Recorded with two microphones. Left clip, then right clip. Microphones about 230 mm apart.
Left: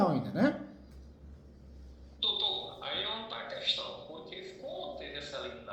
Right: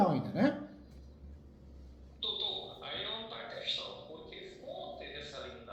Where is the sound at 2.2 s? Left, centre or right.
Left.